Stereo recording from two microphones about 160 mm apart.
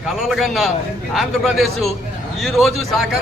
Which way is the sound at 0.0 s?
Centre (ahead or behind).